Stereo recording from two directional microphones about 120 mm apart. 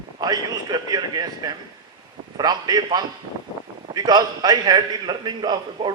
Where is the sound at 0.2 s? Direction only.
35° right (ahead or behind).